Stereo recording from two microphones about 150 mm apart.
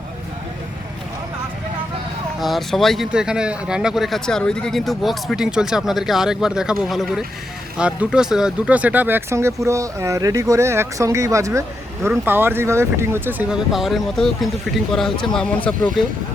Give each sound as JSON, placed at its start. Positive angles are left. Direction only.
{"t": 2.4, "sound": "speech", "side_deg": 0}